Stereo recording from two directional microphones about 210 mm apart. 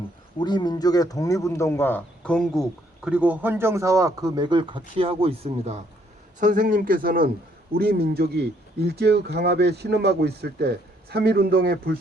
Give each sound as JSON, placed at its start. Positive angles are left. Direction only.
{"t": 0.3, "sound": "a man's voice", "side_deg": 20}